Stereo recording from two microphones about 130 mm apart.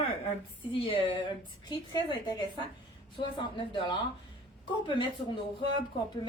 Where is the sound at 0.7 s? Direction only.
40° left (ahead or behind).